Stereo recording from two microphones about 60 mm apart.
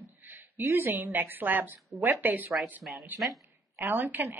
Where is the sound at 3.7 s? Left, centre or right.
Right.